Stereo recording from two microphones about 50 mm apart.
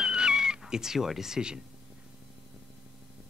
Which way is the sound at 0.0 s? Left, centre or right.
Centre.